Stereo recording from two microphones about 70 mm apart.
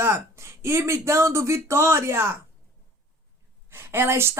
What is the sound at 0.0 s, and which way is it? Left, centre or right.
A woman's voice, right.